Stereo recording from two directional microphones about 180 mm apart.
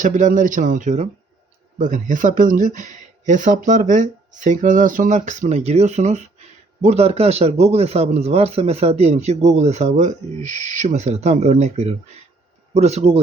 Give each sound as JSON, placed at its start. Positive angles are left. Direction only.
{"t": 0.0, "sound": "a man's voice", "side_deg": -45}